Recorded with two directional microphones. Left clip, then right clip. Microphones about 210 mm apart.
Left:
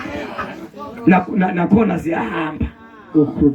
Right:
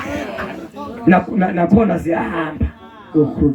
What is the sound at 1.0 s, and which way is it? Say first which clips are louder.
A man's voice: right 1 dB; 55° left (ahead or behind).